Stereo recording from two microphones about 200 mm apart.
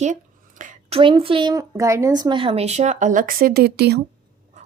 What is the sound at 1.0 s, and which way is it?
Speech, 25° right (ahead or behind).